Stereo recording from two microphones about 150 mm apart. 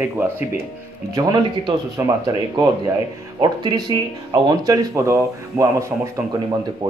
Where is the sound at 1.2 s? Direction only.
25° right (ahead or behind).